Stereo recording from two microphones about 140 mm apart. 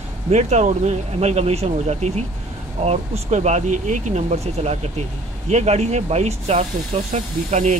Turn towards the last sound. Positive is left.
turn(degrees=-55)  # may be behind; listen again after turning